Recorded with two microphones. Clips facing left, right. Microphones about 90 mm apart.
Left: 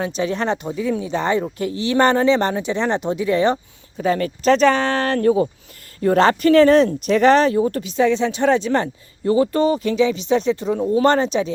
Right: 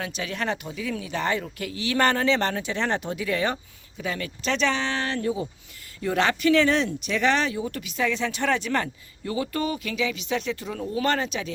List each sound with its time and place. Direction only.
0.0 s speech: 30° left (ahead or behind)
3.9 s speech: 40° left (ahead or behind); by 5.5 s 60° left (ahead or behind)
6.0 s speech: 40° left (ahead or behind)
7.8 s speech: 30° left (ahead or behind)